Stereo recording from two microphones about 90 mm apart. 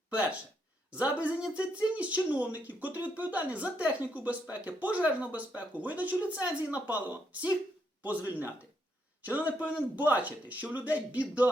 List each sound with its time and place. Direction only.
0.1 s a man's voice: 15° right (ahead or behind)